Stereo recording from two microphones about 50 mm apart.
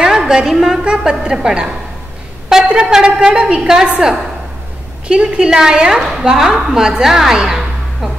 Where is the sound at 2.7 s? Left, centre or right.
Centre.